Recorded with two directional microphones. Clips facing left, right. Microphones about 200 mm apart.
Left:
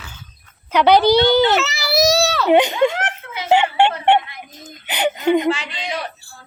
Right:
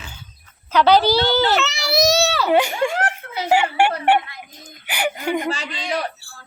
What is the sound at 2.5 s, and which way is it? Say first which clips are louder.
Speech: left 6 dB; 20° left (ahead or behind).